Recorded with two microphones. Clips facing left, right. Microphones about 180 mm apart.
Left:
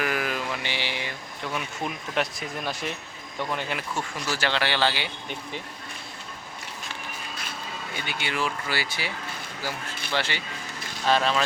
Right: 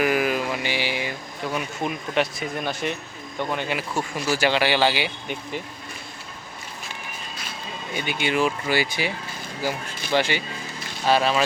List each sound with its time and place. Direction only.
0.0 s a sound: 10° right (ahead or behind)
1.5 s speech: centre (ahead or behind)
7.9 s speech: 15° right (ahead or behind)